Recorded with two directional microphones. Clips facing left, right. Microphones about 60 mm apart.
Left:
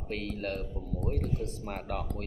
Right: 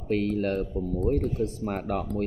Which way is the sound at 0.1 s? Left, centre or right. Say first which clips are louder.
Right 9 dB; right.